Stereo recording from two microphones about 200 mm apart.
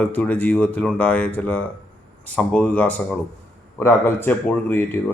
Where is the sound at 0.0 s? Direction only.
10° left (ahead or behind).